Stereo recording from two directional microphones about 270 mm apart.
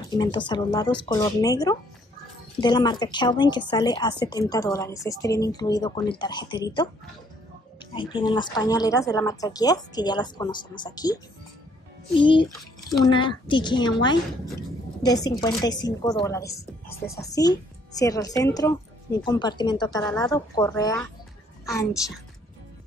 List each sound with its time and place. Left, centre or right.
0.1 s a woman's voice: centre
7.9 s a woman's voice: centre
12.2 s a woman's voice: centre
16.4 s speech: left
17.2 s a woman's voice: centre